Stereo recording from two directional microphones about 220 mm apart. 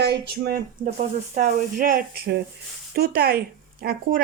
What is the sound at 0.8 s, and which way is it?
Speech, 35° right (ahead or behind).